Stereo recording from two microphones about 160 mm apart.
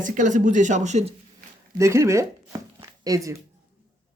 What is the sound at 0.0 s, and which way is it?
Speech, 55° right (ahead or behind).